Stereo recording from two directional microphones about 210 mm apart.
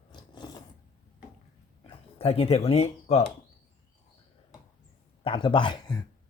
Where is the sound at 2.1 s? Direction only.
30° left (ahead or behind).